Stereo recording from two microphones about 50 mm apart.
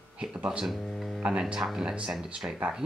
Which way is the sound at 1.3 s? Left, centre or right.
Centre.